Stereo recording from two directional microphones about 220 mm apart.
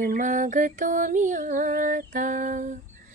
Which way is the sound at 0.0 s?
40° right (ahead or behind).